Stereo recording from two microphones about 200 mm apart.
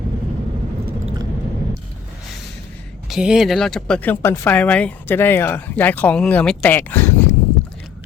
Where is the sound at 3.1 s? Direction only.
5° right (ahead or behind).